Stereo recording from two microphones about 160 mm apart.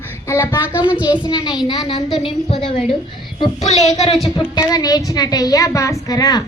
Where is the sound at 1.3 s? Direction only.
25° left (ahead or behind).